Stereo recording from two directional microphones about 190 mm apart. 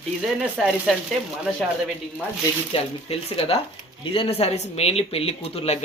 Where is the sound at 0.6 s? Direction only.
Centre (ahead or behind).